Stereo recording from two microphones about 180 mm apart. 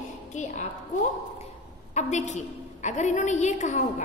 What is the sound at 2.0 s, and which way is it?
A woman's voice, 40° left (ahead or behind).